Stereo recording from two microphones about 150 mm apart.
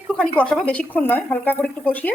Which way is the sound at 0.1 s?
5° left (ahead or behind).